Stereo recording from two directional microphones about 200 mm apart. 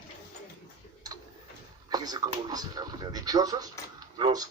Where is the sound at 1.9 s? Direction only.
20° right (ahead or behind).